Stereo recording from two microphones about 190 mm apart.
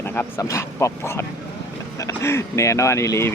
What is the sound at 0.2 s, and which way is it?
Speech, 15° left (ahead or behind).